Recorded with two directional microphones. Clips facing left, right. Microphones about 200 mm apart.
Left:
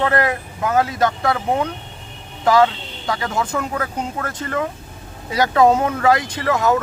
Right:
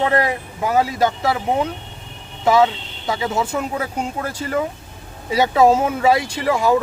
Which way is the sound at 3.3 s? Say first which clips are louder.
Right 2 dB; 5° right (ahead or behind).